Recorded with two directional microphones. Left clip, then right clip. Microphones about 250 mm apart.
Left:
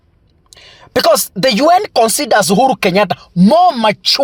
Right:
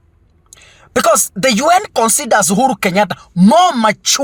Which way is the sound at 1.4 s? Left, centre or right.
Left.